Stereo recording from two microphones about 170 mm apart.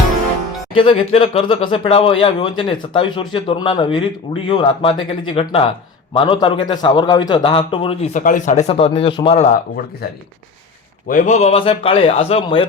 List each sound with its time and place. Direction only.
0.7 s a man's voice: 30° left (ahead or behind)
8.1 s speech: 50° left (ahead or behind); by 9.5 s 35° left (ahead or behind)
11.1 s speech: 50° left (ahead or behind); by 12.6 s 30° left (ahead or behind)